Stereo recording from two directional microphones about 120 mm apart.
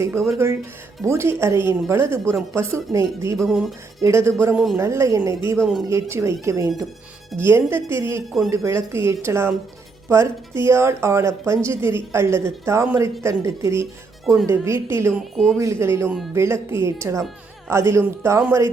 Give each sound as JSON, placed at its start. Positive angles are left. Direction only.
{"t": 0.0, "sound": "a woman's voice", "side_deg": -25}
{"t": 3.3, "sound": "speech", "side_deg": 0}
{"t": 4.0, "sound": "a woman's voice", "side_deg": -25}
{"t": 4.5, "sound": "speech", "side_deg": 0}
{"t": 4.8, "sound": "a woman's voice", "side_deg": -25}